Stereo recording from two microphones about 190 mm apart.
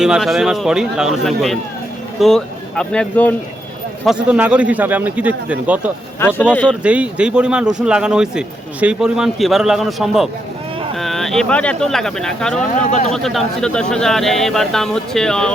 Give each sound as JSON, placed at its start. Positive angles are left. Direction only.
{"t": 0.0, "sound": "speech", "side_deg": 0}
{"t": 4.0, "sound": "a man's voice", "side_deg": -5}
{"t": 6.1, "sound": "speech", "side_deg": 10}
{"t": 6.7, "sound": "speech", "side_deg": -5}
{"t": 12.9, "sound": "speech", "side_deg": 35}
{"t": 13.1, "sound": "speech", "side_deg": 0}